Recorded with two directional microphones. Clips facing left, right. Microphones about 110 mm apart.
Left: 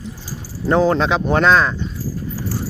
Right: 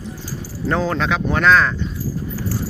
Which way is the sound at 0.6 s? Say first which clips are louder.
Left 5 dB; 20° left (ahead or behind).